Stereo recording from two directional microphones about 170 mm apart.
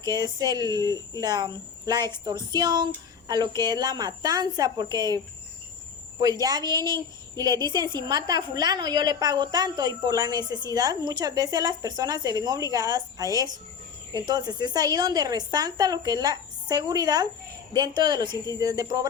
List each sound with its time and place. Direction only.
0.1 s a woman's voice: 25° right (ahead or behind)